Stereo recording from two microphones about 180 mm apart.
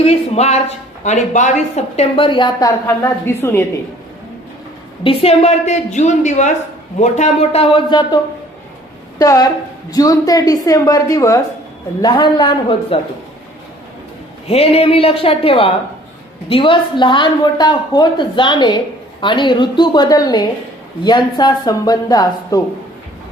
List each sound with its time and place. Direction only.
0.0 s a woman's voice: 35° left (ahead or behind); by 3.7 s 15° left (ahead or behind)
5.0 s a woman's voice: 35° left (ahead or behind)
14.4 s a woman's voice: 35° left (ahead or behind)